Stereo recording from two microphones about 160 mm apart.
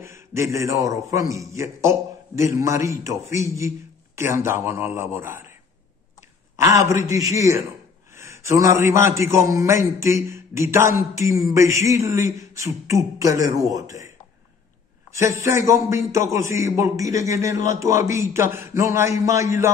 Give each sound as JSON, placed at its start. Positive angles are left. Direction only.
{"t": 0.0, "sound": "a man's voice", "side_deg": -15}
{"t": 6.6, "sound": "a man's voice", "side_deg": -20}
{"t": 15.1, "sound": "a man's voice", "side_deg": -15}